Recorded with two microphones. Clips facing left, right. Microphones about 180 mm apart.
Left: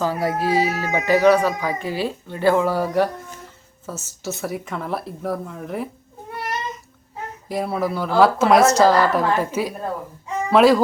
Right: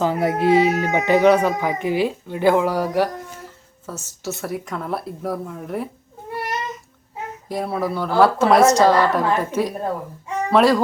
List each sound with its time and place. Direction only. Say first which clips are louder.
0.0 s speech: right 3 dB; 20° right (ahead or behind)
3.8 s speech: even; centre (ahead or behind)
7.4 s speech: left 1 dB; centre (ahead or behind)